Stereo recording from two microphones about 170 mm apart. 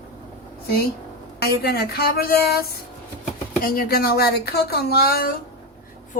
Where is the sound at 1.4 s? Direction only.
70° left (ahead or behind).